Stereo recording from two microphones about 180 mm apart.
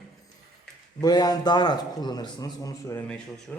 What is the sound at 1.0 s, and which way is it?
A man's voice, 20° left (ahead or behind).